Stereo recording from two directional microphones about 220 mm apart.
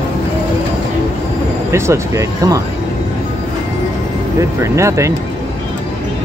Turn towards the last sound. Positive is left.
turn(degrees=-15)  # may be behind; listen again after turning